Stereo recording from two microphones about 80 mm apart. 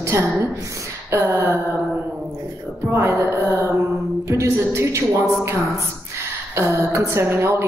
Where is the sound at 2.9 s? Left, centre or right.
Right.